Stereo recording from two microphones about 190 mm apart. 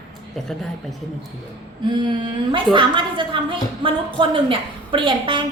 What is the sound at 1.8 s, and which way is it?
A woman's voice, 25° right (ahead or behind).